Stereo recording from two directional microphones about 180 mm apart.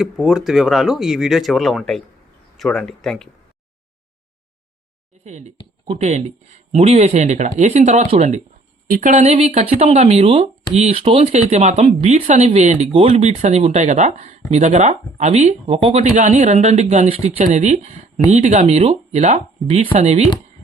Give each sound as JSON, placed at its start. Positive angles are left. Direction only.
{"t": 0.0, "sound": "speech", "side_deg": -5}
{"t": 5.2, "sound": "speech", "side_deg": -40}
{"t": 8.9, "sound": "speech", "side_deg": -50}